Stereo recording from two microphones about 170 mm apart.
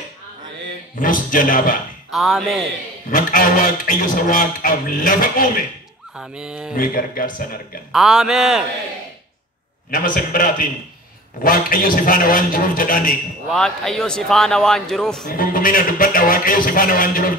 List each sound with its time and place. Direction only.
0.9 s a man's voice: 50° left (ahead or behind)
2.0 s speech: centre (ahead or behind)
3.1 s a man's voice: 55° left (ahead or behind)
6.1 s a man's voice: 5° right (ahead or behind)
6.7 s a man's voice: 55° left (ahead or behind)
7.9 s a man's voice: 5° right (ahead or behind)
9.8 s a man's voice: 55° left (ahead or behind)
13.5 s a man's voice: 5° left (ahead or behind)
15.2 s a man's voice: 55° left (ahead or behind)